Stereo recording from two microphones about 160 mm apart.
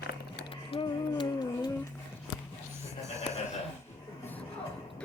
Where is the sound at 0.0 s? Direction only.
90° left.